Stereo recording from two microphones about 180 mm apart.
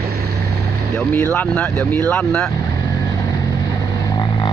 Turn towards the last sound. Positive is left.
turn(degrees=25)  # may be behind; listen again after turning